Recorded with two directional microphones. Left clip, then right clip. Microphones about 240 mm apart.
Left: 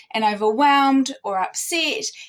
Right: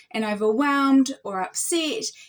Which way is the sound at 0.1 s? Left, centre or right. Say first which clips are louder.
Left 4 dB; centre.